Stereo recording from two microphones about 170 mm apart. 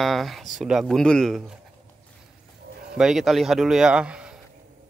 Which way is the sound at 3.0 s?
Centre (ahead or behind).